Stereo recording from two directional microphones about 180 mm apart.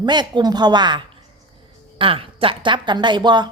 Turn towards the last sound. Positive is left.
turn(degrees=-25)  # may be behind; listen again after turning